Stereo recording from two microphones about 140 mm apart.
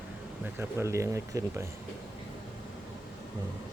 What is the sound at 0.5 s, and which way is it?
Speech, 20° right (ahead or behind).